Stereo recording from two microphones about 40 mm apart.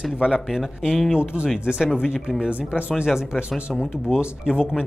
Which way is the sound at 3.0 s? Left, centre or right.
Centre.